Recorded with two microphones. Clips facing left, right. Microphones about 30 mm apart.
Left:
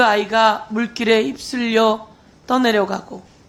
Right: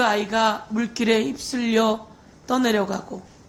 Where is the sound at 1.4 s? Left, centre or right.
Left.